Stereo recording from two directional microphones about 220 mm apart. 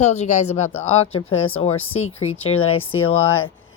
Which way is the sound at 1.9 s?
70° left (ahead or behind).